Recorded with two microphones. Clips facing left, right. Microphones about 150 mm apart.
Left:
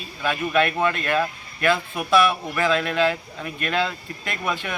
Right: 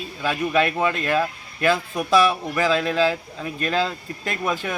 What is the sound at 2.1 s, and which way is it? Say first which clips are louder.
A man's voice: right 1 dB; 35° right (ahead or behind).